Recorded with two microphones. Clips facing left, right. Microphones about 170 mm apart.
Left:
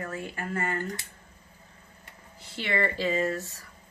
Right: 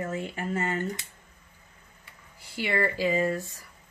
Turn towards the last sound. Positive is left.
turn(degrees=-10)  # may be behind; listen again after turning